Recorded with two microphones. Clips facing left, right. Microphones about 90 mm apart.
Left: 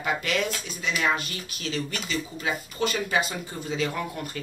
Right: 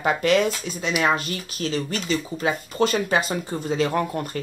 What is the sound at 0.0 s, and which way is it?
Speech, 40° right (ahead or behind).